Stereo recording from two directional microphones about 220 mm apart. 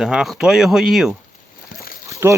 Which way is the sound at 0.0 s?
Centre (ahead or behind).